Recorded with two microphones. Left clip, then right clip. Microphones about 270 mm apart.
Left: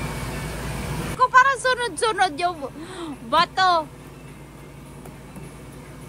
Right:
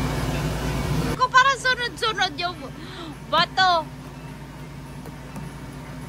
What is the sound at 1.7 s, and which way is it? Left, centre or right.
Speech, centre.